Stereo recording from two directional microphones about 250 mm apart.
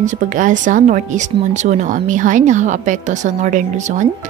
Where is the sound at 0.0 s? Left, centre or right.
Right.